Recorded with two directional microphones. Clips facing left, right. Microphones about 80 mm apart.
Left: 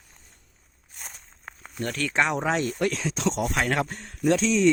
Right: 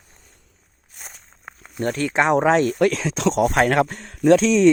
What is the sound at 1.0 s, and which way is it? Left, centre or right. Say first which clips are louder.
Walk: right 1 dB; centre.